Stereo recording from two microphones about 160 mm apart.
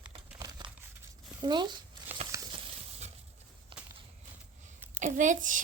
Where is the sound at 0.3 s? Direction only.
30° right (ahead or behind).